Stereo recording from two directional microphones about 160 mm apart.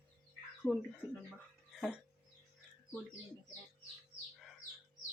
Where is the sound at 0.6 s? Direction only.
15° left (ahead or behind).